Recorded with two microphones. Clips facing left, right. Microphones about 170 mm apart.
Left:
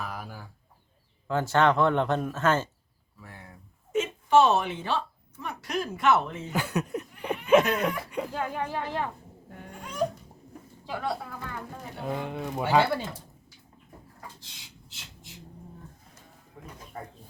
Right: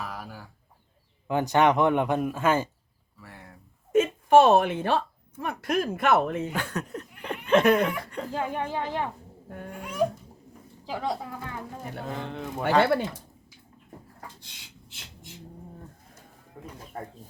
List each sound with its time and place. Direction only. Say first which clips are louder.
0.0 s chicken: even; centre (ahead or behind)
1.3 s speech: right 2 dB; 15° right (ahead or behind)
3.2 s a sound: even; centre (ahead or behind)
3.9 s speech: right 4 dB; 55° right (ahead or behind)
6.5 s speech: left 3 dB; 10° left (ahead or behind)
8.3 s speech: right 2 dB; 20° right (ahead or behind)
9.5 s dog: right 6 dB; 55° right (ahead or behind)
9.8 s dog: right 3 dB; 10° right (ahead or behind)
10.8 s speech: right 1 dB; 20° right (ahead or behind)
12.0 s speech: left 4 dB; 15° left (ahead or behind)